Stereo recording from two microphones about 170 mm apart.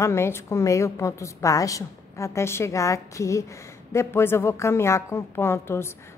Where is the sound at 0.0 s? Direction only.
15° left (ahead or behind).